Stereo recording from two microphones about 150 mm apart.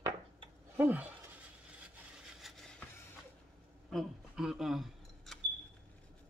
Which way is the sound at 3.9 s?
Centre (ahead or behind).